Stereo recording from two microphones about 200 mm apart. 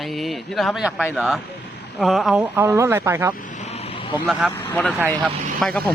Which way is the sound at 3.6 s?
30° left (ahead or behind).